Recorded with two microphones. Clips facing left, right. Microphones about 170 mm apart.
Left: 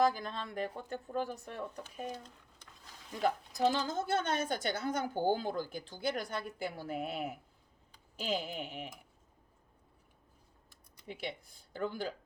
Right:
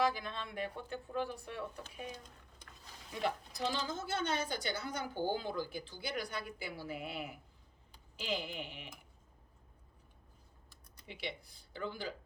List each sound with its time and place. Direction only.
0.0 s a woman's voice: 40° left (ahead or behind)
3.2 s a woman's voice: 45° left (ahead or behind)
11.0 s a woman's voice: 45° left (ahead or behind)